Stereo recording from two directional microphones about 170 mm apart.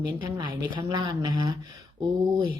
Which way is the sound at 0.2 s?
25° right (ahead or behind).